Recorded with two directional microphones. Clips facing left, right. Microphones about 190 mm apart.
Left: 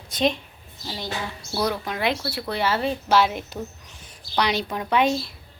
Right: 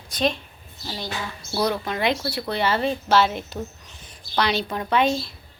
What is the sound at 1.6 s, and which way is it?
A woman's voice, 10° left (ahead or behind).